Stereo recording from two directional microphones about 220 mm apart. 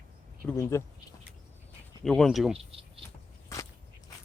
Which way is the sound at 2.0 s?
Centre (ahead or behind).